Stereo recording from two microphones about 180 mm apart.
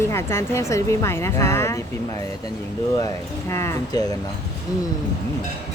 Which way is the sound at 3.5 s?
15° left (ahead or behind).